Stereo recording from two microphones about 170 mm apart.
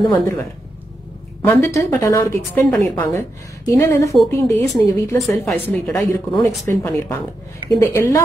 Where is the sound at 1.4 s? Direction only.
15° left (ahead or behind).